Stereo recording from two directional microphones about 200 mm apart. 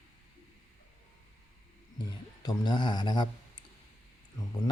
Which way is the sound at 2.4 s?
20° left (ahead or behind).